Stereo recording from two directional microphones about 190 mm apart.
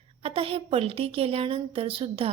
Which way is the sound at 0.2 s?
30° right (ahead or behind).